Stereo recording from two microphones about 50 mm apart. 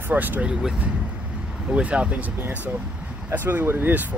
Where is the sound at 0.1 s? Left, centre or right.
Right.